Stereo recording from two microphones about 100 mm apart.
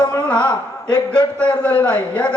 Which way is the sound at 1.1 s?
10° left (ahead or behind).